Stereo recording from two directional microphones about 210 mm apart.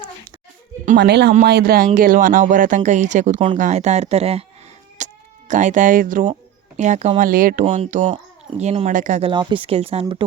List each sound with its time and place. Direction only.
0.9 s speech: 55° right (ahead or behind); by 4.4 s 30° right (ahead or behind)
4.9 s sheep: 35° right (ahead or behind)
6.7 s speech: 35° right (ahead or behind)
9.3 s speech: 25° right (ahead or behind)